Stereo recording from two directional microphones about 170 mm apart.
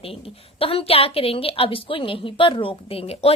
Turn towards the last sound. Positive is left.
turn(degrees=35)  # may be behind; listen again after turning